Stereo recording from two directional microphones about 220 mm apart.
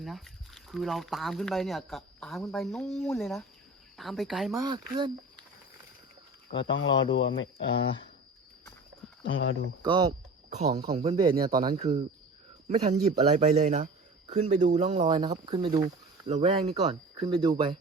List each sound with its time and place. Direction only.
0.0 s speech: centre (ahead or behind)
4.6 s speech: 20° right (ahead or behind)
6.7 s speech: 60° left (ahead or behind)
9.2 s speech: 65° left (ahead or behind)
9.8 s speech: 20° right (ahead or behind)